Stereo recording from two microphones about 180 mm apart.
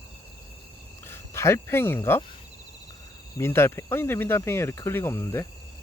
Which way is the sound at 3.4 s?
15° left (ahead or behind).